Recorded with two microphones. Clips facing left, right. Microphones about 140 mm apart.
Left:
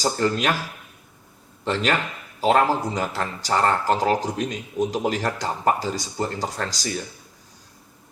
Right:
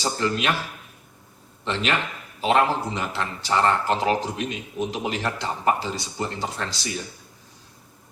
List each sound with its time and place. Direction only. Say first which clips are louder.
0.0 s speech: left 2 dB; 40° left (ahead or behind)
1.6 s speech: left 2 dB; 40° left (ahead or behind)